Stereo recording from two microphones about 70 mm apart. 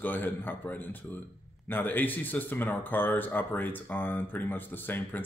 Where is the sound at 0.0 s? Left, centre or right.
Left.